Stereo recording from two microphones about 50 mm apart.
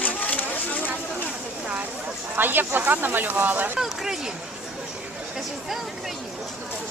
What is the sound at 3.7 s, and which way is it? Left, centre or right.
Speech, centre.